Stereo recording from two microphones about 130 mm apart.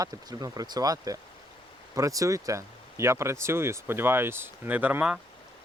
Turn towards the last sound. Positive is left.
turn(degrees=-10)  # may be behind; listen again after turning